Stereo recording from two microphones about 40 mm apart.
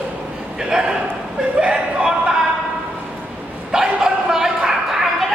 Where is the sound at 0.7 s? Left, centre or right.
Centre.